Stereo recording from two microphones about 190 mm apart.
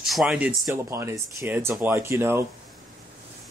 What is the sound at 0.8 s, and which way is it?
Speech, 15° right (ahead or behind).